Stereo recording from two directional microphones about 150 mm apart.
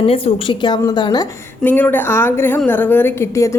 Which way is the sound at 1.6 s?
10° left (ahead or behind).